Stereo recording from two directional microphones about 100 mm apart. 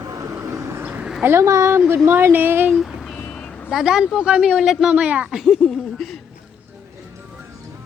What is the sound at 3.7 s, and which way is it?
Speech, 5° right (ahead or behind).